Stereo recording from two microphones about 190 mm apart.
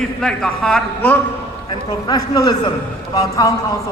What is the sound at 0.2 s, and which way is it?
A man's voice, 5° left (ahead or behind).